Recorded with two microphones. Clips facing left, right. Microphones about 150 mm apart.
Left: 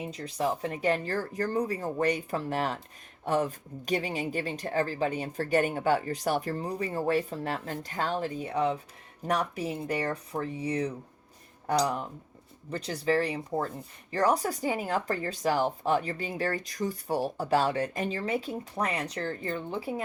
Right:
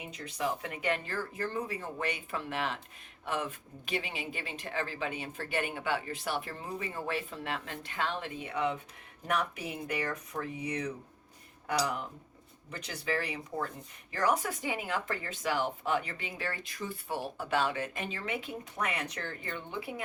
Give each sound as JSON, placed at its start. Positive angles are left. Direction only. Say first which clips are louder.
{"t": 0.0, "sound": "speech", "louder": "left 5 dB", "side_deg": 35}
{"t": 12.7, "sound": "speech", "louder": "left 7 dB", "side_deg": 35}